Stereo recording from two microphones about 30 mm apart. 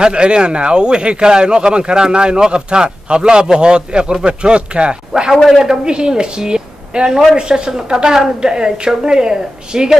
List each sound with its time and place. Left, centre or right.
0.0 s speech: right
5.6 s a woman's voice: right